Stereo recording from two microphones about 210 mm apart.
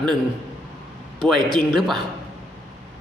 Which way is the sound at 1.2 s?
Centre (ahead or behind).